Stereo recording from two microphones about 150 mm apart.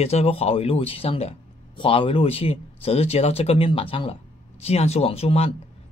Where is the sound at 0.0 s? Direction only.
45° left (ahead or behind).